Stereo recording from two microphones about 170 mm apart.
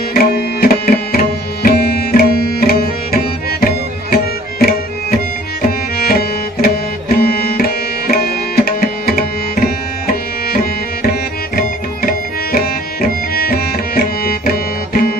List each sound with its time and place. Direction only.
0.1 s tabla: 65° left (ahead or behind)
3.6 s music: 60° left (ahead or behind)